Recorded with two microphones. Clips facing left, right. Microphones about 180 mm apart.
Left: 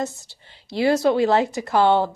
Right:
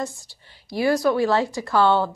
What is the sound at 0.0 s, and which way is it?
A woman's voice, 20° left (ahead or behind).